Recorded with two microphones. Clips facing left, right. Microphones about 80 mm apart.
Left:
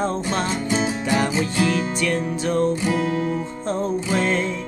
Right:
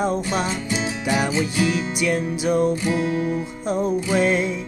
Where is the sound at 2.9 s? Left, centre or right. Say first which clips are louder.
Even; left.